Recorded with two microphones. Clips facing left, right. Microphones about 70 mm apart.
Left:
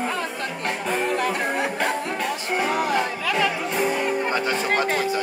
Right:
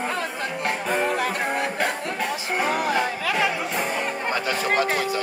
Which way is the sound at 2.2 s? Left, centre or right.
Centre.